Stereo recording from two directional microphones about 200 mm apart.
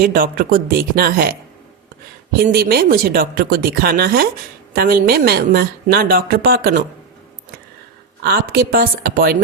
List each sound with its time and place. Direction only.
0.0 s a woman's voice: 45° right (ahead or behind)
8.2 s a woman's voice: 50° right (ahead or behind)